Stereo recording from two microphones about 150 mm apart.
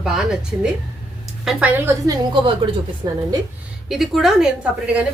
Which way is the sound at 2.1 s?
35° right (ahead or behind).